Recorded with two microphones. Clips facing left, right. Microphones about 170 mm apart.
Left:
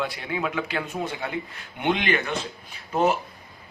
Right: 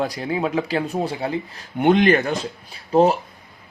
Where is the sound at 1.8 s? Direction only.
45° right (ahead or behind).